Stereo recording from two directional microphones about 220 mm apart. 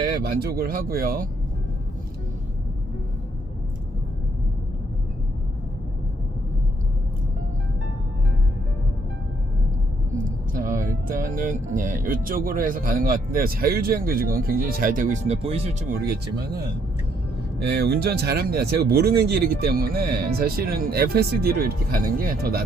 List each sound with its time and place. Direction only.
0.0 s speech: 45° right (ahead or behind)
10.2 s speech: 40° right (ahead or behind)
17.7 s speech: 45° right (ahead or behind)